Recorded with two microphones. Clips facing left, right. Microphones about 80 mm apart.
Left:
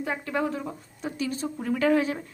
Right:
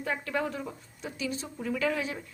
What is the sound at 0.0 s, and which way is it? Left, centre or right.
Speech, left.